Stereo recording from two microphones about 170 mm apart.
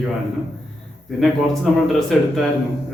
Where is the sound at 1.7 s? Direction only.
Centre (ahead or behind).